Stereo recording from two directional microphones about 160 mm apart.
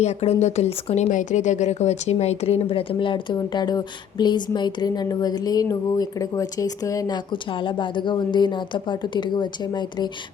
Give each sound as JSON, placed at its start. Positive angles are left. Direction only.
{"t": 0.0, "sound": "speech", "side_deg": 45}
{"t": 1.1, "sound": "a woman's voice", "side_deg": 50}